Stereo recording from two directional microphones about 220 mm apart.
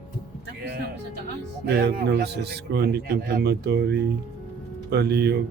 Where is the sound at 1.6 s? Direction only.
50° right (ahead or behind).